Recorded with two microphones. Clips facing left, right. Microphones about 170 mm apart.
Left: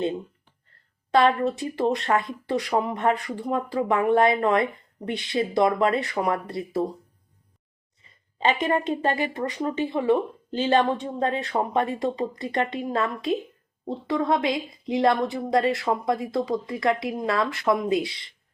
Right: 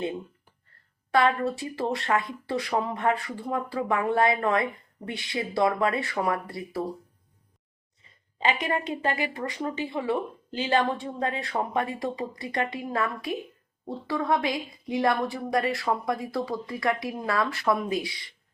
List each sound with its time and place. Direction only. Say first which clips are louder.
1.1 s speech: left 3 dB; 20° left (ahead or behind)
9.1 s speech: left 4 dB; 25° left (ahead or behind)